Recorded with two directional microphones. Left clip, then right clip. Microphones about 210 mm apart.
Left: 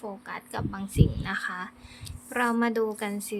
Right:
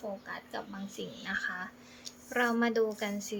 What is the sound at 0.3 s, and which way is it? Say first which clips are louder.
A woman's voice: left 5 dB; 30° left (ahead or behind).